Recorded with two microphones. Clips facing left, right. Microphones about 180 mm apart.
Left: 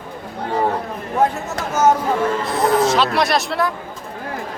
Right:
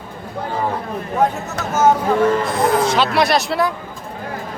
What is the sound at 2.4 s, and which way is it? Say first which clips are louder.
Speech: even; centre (ahead or behind).